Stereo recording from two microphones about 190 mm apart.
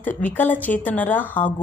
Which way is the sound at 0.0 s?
10° left (ahead or behind).